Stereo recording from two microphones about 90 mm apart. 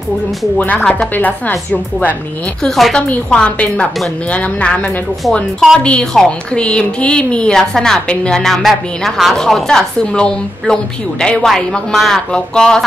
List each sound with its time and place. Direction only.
0.6 s a woman's voice: 15° left (ahead or behind)
2.6 s a woman's voice: 5° left (ahead or behind)